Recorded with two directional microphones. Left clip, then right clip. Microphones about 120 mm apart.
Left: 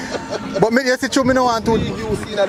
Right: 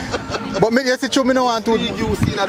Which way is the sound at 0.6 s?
10° left (ahead or behind).